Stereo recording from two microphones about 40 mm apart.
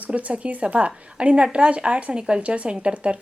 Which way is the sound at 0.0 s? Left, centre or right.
Right.